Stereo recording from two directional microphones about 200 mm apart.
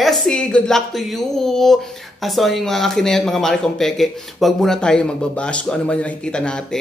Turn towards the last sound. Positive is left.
turn(degrees=5)  # may be behind; listen again after turning